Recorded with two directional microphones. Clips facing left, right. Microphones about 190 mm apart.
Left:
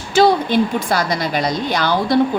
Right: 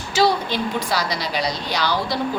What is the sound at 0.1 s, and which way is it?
Speech, 55° left (ahead or behind).